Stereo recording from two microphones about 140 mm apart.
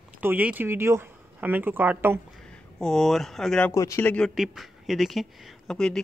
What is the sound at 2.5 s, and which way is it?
Speech, 5° left (ahead or behind).